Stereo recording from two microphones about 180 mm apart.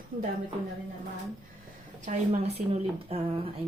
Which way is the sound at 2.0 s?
40° right (ahead or behind).